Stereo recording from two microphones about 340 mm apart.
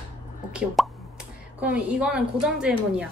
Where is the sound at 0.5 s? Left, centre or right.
Centre.